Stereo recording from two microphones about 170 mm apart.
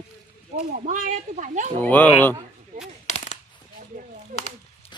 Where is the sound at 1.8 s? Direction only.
10° left (ahead or behind).